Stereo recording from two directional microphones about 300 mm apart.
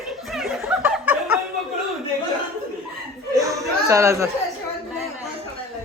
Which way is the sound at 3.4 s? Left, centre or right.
Centre.